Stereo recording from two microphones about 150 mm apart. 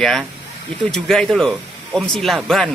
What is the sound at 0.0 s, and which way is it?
Speech, 5° left (ahead or behind).